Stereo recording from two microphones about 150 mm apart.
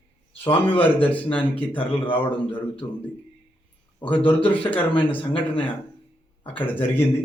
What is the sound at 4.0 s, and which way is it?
Speech, 35° left (ahead or behind).